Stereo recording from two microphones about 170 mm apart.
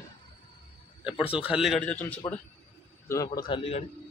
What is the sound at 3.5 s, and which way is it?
Speech, 35° left (ahead or behind).